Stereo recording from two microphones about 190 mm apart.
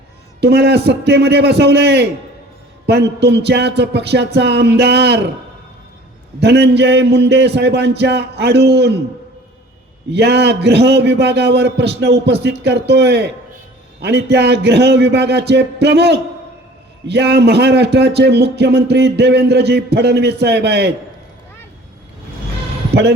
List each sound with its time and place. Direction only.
0.4 s speech: 60° right (ahead or behind)
6.4 s speech: 60° right (ahead or behind)
10.1 s speech: 60° right (ahead or behind)
22.9 s speech: 60° right (ahead or behind)